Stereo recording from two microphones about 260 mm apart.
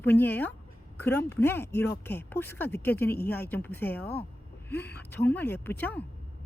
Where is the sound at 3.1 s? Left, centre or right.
Left.